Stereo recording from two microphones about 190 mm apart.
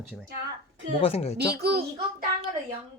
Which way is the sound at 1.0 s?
30° left (ahead or behind).